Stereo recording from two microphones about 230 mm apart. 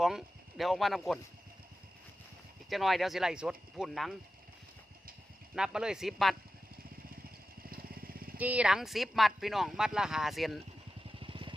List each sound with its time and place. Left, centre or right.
0.0 s speech: centre
2.6 s speech: centre
5.5 s speech: centre
7.6 s vehicle: right
8.4 s speech: centre
11.2 s vehicle: right